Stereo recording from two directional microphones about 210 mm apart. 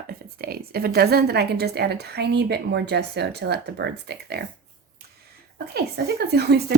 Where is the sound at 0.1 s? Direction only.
45° right (ahead or behind).